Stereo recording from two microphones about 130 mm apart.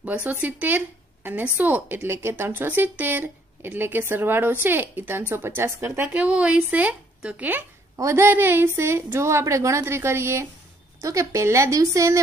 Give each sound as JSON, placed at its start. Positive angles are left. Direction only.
{"t": 0.0, "sound": "a woman's voice", "side_deg": -10}
{"t": 7.9, "sound": "a woman's voice", "side_deg": -25}